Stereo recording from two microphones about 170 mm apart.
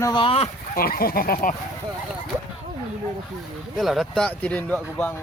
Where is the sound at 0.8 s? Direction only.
60° left (ahead or behind).